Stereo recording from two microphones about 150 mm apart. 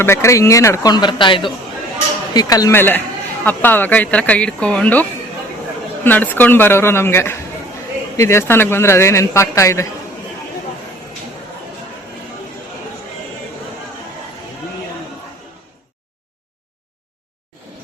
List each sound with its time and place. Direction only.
0.0 s a man's voice: 20° left (ahead or behind)
6.1 s a man's voice: 10° left (ahead or behind)